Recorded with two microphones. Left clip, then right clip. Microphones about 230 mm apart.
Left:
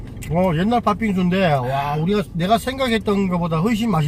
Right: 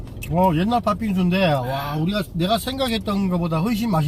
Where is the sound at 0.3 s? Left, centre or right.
Centre.